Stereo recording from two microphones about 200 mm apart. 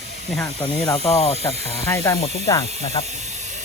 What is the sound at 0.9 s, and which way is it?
Speech, 30° left (ahead or behind).